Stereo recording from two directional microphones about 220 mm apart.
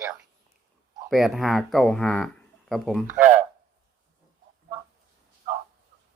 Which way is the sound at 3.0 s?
35° right (ahead or behind).